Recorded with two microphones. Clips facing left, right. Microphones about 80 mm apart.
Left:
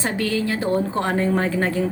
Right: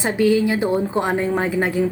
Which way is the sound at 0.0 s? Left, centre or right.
Centre.